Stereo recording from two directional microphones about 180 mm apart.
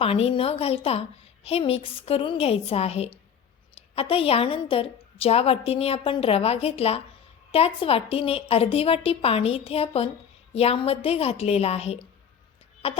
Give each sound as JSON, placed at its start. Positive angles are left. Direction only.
{"t": 0.0, "sound": "a woman's voice", "side_deg": 30}